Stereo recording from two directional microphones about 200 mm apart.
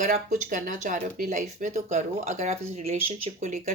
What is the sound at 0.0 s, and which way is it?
Speech, 35° right (ahead or behind).